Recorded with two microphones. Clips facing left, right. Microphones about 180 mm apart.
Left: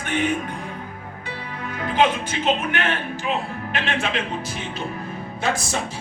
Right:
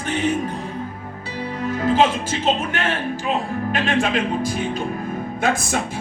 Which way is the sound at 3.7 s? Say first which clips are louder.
Right 4 dB; 45° right (ahead or behind).